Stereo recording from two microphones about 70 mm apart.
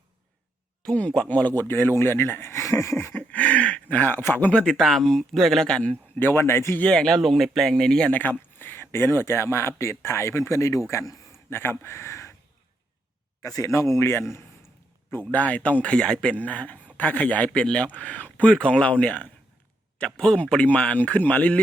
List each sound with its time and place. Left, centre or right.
1.3 s speech: left
1.6 s speech: left
3.1 s a sound: left
4.2 s speech: left
4.5 s speech: centre
5.6 s speech: centre
6.1 s speech: left
6.9 s speech: centre
8.1 s speech: left
11.5 s speech: left
13.4 s a man's voice: left
15.3 s speech: left